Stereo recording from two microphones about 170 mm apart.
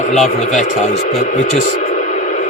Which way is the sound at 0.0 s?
45° left (ahead or behind).